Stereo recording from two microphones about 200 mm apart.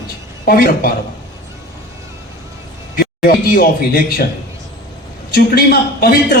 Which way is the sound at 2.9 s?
45° left (ahead or behind).